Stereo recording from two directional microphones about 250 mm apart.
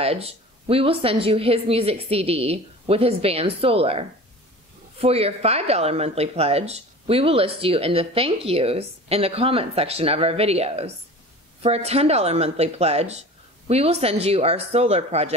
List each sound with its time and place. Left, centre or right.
0.0 s speech: right